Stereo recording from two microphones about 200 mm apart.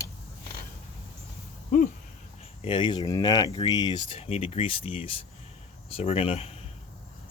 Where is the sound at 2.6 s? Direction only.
25° left (ahead or behind).